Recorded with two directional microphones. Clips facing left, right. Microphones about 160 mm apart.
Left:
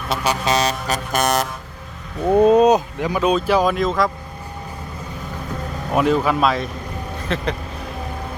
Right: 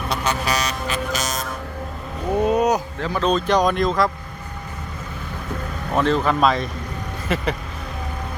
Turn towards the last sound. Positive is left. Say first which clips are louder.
# even
turn(degrees=-5)  # may be behind; listen again after turning